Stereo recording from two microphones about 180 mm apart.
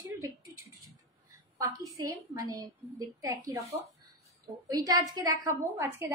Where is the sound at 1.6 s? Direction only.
20° right (ahead or behind).